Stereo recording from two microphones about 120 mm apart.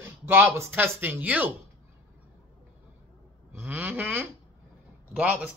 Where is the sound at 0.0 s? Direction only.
20° right (ahead or behind).